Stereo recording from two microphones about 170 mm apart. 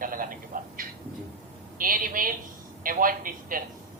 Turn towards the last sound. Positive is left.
turn(degrees=-55)  # may be behind; listen again after turning